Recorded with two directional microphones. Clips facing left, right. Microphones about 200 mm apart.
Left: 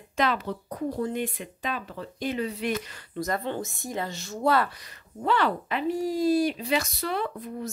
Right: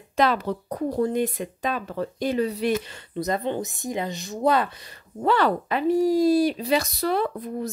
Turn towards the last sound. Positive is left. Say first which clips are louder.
# right 5 dB
turn(degrees=-40)  # may be behind; listen again after turning